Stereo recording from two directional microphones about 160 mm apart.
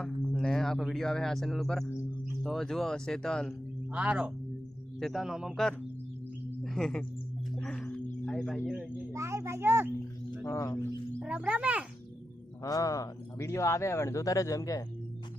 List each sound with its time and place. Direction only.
0.0 s speech: 5° left (ahead or behind)
3.9 s a child's voice: 10° right (ahead or behind)
6.6 s chirp tone: 5° left (ahead or behind)
8.2 s speech: 5° left (ahead or behind)
9.1 s a child's voice: 20° right (ahead or behind)
10.4 s a man's voice: 20° left (ahead or behind)
11.2 s a child's voice: 5° right (ahead or behind)
12.6 s a man's voice: 20° left (ahead or behind)